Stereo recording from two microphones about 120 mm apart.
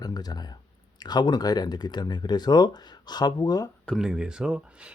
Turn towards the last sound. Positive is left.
turn(degrees=-10)  # may be behind; listen again after turning